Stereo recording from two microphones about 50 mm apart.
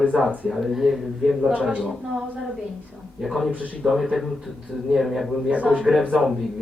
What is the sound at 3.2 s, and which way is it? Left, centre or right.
Speech, centre.